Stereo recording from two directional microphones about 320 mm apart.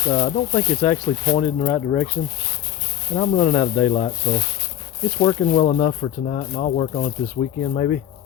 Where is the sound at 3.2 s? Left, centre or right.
Centre.